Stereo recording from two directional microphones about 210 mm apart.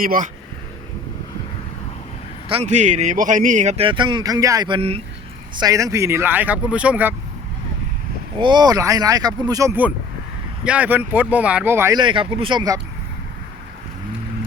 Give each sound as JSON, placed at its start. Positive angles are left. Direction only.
{"t": 0.0, "sound": "speech", "side_deg": -40}
{"t": 2.5, "sound": "a man's voice", "side_deg": -30}
{"t": 8.4, "sound": "speech", "side_deg": -20}